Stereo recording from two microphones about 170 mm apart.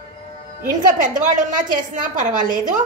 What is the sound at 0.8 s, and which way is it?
A woman's voice, 50° right (ahead or behind).